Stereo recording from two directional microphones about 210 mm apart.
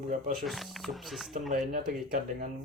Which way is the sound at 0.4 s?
Centre (ahead or behind).